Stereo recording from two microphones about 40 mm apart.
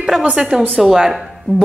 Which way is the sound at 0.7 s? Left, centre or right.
Centre.